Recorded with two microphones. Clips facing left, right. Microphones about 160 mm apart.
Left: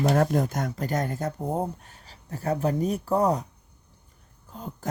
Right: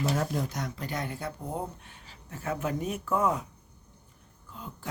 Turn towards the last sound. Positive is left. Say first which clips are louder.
# left 5 dB
turn(degrees=40)  # may be behind; listen again after turning